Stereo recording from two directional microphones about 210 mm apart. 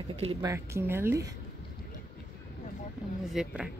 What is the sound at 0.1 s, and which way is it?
Speech, 30° right (ahead or behind).